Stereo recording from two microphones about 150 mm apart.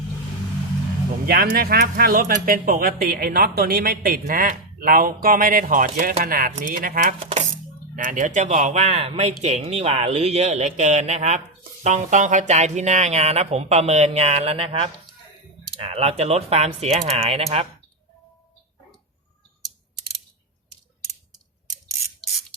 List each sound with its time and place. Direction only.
1.3 s speech: 80° right; by 7.1 s 65° right (ahead or behind)
7.2 s speech: 40° right (ahead or behind)
7.9 s speech: 60° right (ahead or behind); by 17.7 s 45° right (ahead or behind)